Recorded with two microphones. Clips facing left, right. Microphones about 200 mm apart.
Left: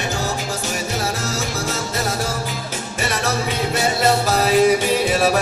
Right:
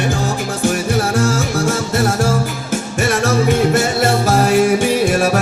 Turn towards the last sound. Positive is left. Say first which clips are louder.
# right 3 dB
turn(degrees=-50)  # may be behind; listen again after turning